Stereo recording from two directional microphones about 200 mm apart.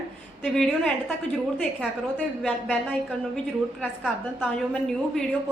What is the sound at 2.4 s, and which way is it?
Speech, 5° left (ahead or behind).